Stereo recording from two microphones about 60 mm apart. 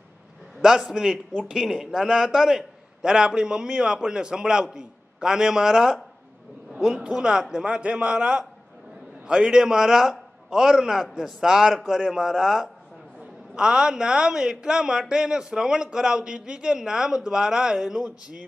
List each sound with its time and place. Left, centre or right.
0.6 s a man's voice: centre